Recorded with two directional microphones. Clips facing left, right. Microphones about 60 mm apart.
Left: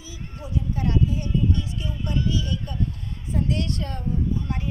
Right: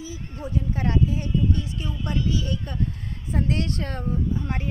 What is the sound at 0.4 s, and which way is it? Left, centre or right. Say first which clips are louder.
A woman's voice: right 1 dB; right.